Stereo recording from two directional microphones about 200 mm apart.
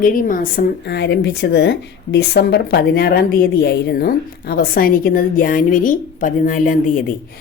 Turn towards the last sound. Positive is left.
turn(degrees=40)  # may be behind; listen again after turning